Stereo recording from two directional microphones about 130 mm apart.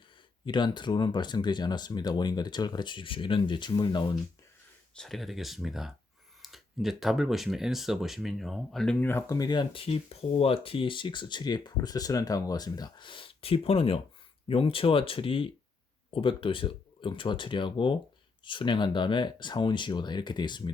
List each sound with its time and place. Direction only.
0.4 s speech: 35° left (ahead or behind)
4.9 s speech: centre (ahead or behind)
9.0 s speech: 15° left (ahead or behind)
9.4 s speech: 35° left (ahead or behind)